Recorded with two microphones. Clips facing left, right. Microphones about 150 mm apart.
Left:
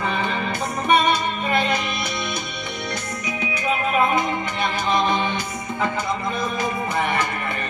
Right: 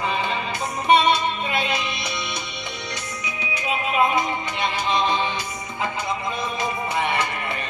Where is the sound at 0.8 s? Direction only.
50° left (ahead or behind).